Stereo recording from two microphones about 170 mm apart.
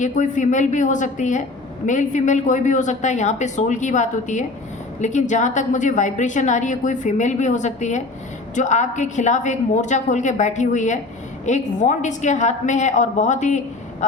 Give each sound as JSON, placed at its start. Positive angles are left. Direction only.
{"t": 0.0, "sound": "a woman's voice", "side_deg": 45}